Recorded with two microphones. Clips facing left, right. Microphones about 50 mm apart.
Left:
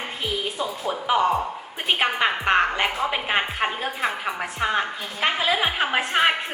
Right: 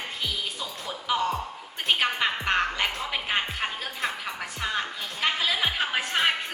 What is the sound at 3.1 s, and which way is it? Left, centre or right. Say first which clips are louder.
A woman's voice: left 4 dB; left.